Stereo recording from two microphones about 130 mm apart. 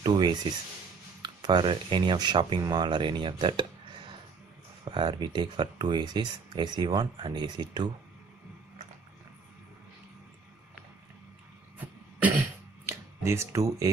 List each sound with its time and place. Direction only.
0.0 s speech: 35° right (ahead or behind)
4.8 s speech: 40° right (ahead or behind)
11.8 s cough: 10° right (ahead or behind)
12.8 s a sound: 20° right (ahead or behind)